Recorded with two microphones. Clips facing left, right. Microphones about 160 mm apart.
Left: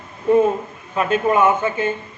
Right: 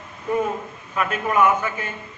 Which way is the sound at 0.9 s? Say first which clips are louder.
Left 6 dB; 25° left (ahead or behind).